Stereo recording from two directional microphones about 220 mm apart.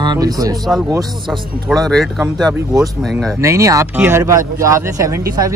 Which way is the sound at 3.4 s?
15° right (ahead or behind).